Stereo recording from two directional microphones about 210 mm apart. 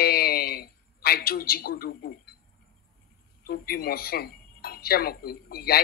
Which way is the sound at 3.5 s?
45° left (ahead or behind).